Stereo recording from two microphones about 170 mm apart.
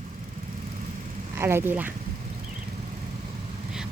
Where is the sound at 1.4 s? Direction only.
15° right (ahead or behind).